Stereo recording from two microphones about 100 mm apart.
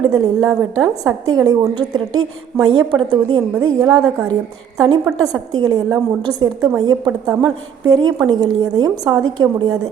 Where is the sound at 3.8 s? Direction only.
35° right (ahead or behind).